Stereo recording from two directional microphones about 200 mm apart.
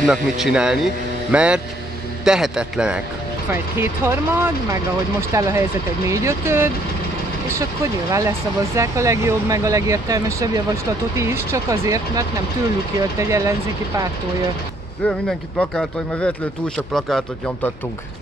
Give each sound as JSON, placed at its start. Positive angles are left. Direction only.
{"t": 0.0, "sound": "speech", "side_deg": 0}
{"t": 15.0, "sound": "speech", "side_deg": 5}